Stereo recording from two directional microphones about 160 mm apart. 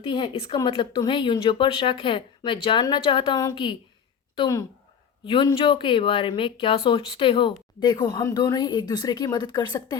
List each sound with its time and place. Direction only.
0.1 s speech: 30° left (ahead or behind)